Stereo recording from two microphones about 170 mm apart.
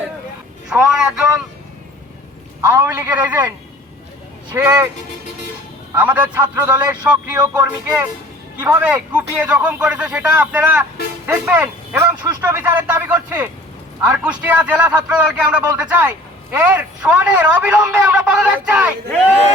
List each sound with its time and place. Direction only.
0.7 s speech: 5° right (ahead or behind)
2.6 s speech: 15° right (ahead or behind)
4.5 s speech: 15° right (ahead or behind)
6.0 s speech: 10° right (ahead or behind)